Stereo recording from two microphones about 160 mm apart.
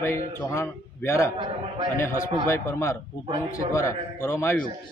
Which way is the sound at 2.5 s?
15° left (ahead or behind).